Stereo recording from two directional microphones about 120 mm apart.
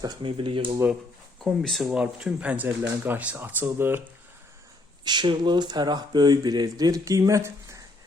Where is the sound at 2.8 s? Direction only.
20° right (ahead or behind).